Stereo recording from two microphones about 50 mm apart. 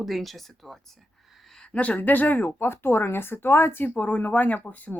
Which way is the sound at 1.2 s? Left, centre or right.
Centre.